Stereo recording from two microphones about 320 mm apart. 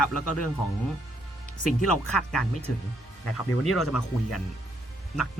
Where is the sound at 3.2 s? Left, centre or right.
Left.